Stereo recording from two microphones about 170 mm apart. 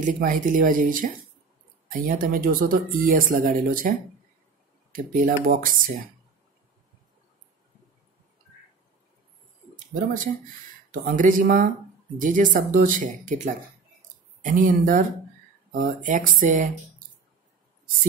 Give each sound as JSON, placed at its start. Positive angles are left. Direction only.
{"t": 0.0, "sound": "speech", "side_deg": -50}
{"t": 4.9, "sound": "speech", "side_deg": -55}
{"t": 10.9, "sound": "speech", "side_deg": -50}